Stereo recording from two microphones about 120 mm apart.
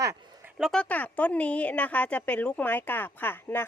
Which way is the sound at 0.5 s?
5° right (ahead or behind).